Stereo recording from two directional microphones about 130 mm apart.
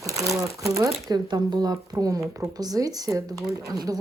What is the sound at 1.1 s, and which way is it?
Speech, 35° right (ahead or behind).